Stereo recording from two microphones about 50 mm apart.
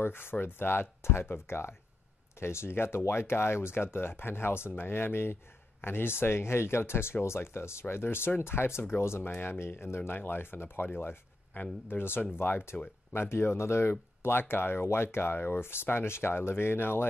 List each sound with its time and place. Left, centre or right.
0.0 s speech: left